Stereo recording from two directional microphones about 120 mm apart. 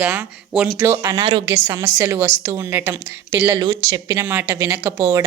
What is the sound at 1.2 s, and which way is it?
Speech, 45° right (ahead or behind).